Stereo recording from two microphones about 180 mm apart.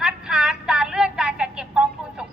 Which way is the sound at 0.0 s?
5° right (ahead or behind).